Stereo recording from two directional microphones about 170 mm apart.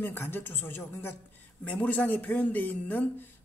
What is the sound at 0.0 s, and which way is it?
Speech, 10° left (ahead or behind).